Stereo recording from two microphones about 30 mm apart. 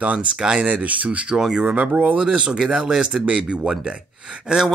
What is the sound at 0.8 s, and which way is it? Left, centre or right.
Speech, right.